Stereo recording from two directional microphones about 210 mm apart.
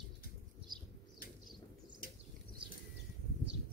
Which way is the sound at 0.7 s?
20° right (ahead or behind).